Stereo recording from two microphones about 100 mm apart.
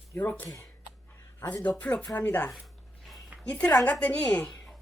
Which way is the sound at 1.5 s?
15° left (ahead or behind).